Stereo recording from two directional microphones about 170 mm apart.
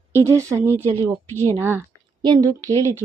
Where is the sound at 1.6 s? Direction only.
15° right (ahead or behind).